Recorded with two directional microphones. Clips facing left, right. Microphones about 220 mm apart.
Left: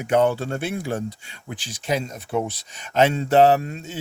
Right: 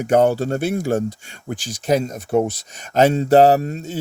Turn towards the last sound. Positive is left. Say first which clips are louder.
# right 3 dB
turn(degrees=-40)  # may be behind; listen again after turning